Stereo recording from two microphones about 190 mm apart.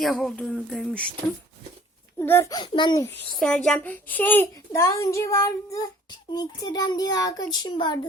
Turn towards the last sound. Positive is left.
turn(degrees=20)  # may be behind; listen again after turning